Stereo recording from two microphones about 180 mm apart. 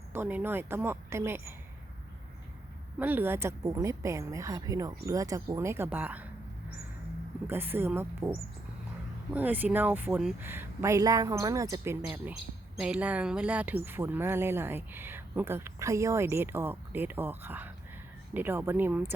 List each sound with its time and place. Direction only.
0.1 s speech: 10° right (ahead or behind)
3.0 s speech: 10° right (ahead or behind)
7.4 s speech: 10° right (ahead or behind)